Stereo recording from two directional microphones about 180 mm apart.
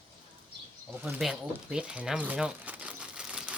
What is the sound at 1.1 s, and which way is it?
Crumpling, centre (ahead or behind).